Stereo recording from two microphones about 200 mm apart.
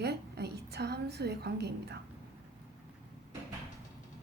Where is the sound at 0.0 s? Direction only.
55° right (ahead or behind).